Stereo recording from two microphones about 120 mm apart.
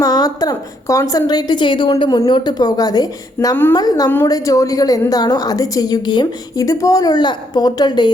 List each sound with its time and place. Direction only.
0.0 s a woman's voice: 30° left (ahead or behind)
3.5 s a woman's voice: 20° left (ahead or behind)
3.8 s a woman's voice: 30° left (ahead or behind)